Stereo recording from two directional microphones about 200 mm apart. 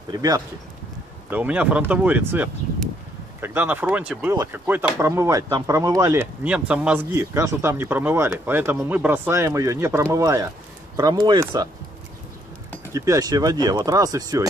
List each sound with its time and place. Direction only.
0.1 s speech: 20° right (ahead or behind)
1.3 s speech: 5° right (ahead or behind)
12.9 s speech: 15° right (ahead or behind)